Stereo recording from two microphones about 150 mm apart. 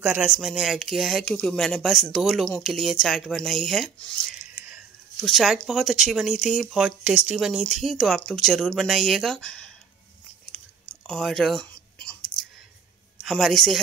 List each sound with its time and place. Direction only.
0.0 s speech: 5° right (ahead or behind)
11.1 s chewing: centre (ahead or behind)
13.2 s speech: centre (ahead or behind)